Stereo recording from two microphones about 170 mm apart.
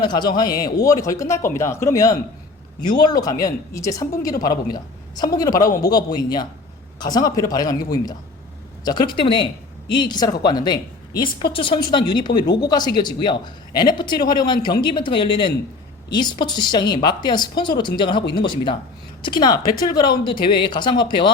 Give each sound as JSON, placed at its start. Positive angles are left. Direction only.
{"t": 0.0, "sound": "speech", "side_deg": 25}